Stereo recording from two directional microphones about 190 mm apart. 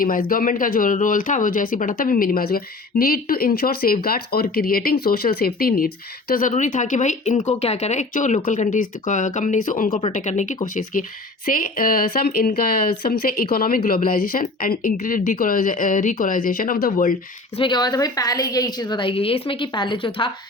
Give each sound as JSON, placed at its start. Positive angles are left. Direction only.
{"t": 0.0, "sound": "speech", "side_deg": 50}
{"t": 17.6, "sound": "a woman's voice", "side_deg": 20}